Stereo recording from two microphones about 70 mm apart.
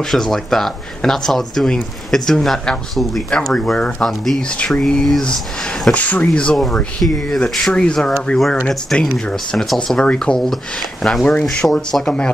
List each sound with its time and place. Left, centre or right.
0.1 s speech: centre
5.9 s speech: left